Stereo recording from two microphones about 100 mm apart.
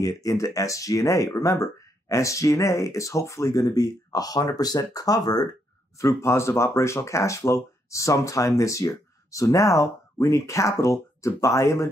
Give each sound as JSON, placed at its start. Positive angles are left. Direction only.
{"t": 0.0, "sound": "speech", "side_deg": 35}
{"t": 5.9, "sound": "speech", "side_deg": 30}